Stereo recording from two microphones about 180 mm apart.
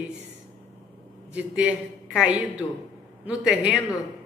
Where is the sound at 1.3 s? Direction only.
5° right (ahead or behind).